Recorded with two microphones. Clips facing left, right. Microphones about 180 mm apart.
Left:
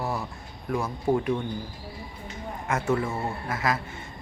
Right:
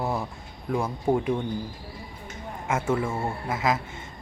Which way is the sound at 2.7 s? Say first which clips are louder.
Even; 10° right (ahead or behind).